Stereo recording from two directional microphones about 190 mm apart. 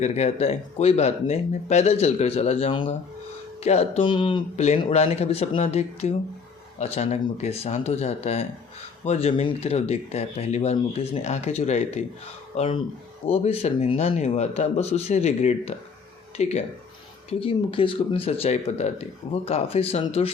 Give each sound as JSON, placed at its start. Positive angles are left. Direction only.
{"t": 0.0, "sound": "speech", "side_deg": 35}